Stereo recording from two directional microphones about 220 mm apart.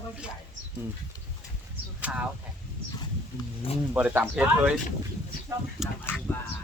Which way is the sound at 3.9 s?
5° right (ahead or behind).